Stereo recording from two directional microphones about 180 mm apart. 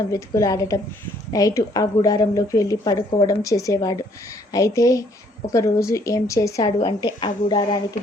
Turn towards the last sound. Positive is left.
turn(degrees=25)  # may be behind; listen again after turning